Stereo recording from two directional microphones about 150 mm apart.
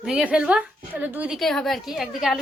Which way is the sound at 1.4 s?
Centre (ahead or behind).